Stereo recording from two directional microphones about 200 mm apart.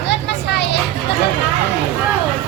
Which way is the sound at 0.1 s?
55° left (ahead or behind).